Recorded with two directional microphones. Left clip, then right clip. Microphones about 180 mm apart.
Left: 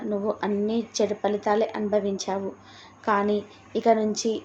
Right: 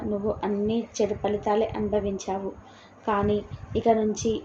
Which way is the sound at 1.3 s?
90° left.